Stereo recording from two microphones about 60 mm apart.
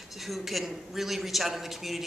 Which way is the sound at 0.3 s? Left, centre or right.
Centre.